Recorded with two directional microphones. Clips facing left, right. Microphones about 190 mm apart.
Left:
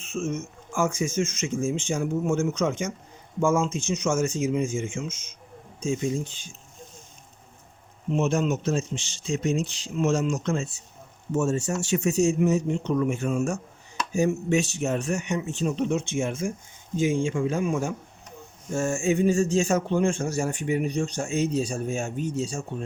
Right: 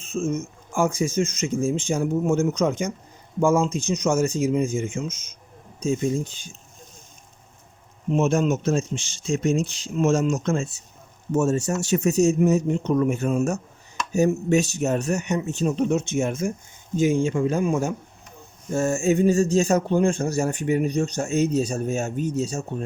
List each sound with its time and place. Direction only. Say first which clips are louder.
0.1 s speech: right 4 dB; 35° right (ahead or behind)
8.1 s speech: right 3 dB; 45° right (ahead or behind)